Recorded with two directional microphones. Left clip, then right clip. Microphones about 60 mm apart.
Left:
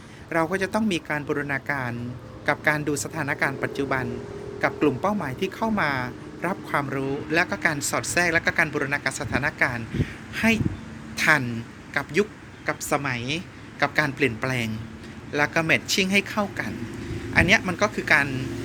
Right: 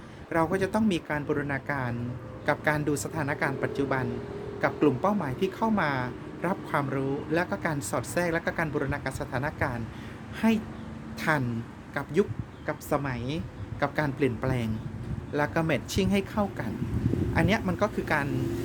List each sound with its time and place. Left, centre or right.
0.3 s a man's voice: right
1.0 s speech: right
1.5 s speech: right
2.5 s speech: right
3.2 s speech: right
11.9 s a man's voice: right
12.6 s speech: right
15.3 s speech: right